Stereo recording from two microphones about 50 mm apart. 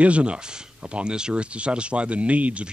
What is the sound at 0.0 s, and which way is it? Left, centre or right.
Speech, right.